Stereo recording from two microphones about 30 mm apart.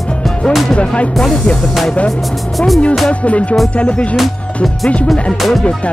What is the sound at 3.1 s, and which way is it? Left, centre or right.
Music, left.